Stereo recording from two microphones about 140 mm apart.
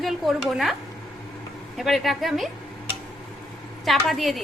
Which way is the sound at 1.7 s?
Centre (ahead or behind).